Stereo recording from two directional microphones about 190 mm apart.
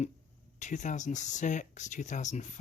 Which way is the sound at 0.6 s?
40° left (ahead or behind).